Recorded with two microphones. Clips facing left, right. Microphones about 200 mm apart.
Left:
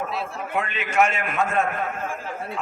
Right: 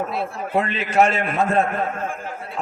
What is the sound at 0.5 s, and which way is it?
A man's voice, 35° right (ahead or behind).